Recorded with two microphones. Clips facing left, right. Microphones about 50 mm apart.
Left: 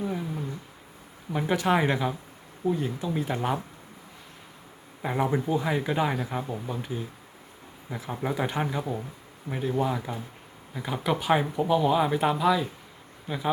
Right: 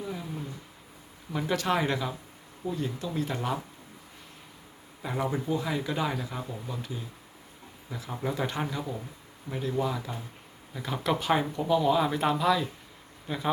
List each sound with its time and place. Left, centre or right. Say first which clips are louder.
0.0 s a sound: left 5 dB; left
1.3 s speech: left 3 dB; centre
5.0 s speech: left 4 dB; left
10.8 s speech: left 1 dB; centre